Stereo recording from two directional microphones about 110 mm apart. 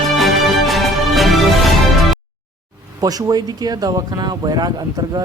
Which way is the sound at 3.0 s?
35° right (ahead or behind).